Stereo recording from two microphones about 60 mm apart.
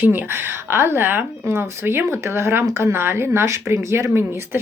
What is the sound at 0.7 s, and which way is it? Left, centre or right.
A woman's voice, right.